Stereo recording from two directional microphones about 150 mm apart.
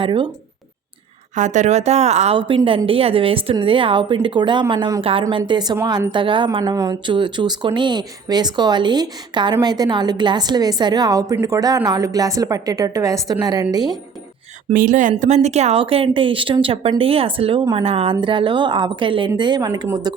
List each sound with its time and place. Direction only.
0.0 s a woman's voice: 35° right (ahead or behind)
1.4 s a woman's voice: 50° right (ahead or behind); by 13.9 s 25° right (ahead or behind)
14.7 s speech: 60° right (ahead or behind)
15.2 s a woman's voice: 50° right (ahead or behind); by 20.1 s 30° right (ahead or behind)